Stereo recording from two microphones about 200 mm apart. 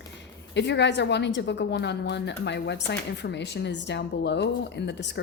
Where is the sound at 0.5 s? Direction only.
60° left (ahead or behind).